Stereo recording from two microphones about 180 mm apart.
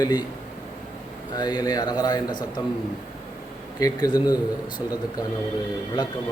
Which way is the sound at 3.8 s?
20° left (ahead or behind).